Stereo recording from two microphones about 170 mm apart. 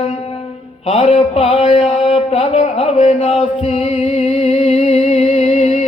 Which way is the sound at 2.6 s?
45° left (ahead or behind).